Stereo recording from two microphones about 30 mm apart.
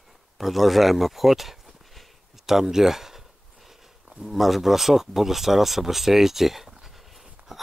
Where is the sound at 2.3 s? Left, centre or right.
Centre.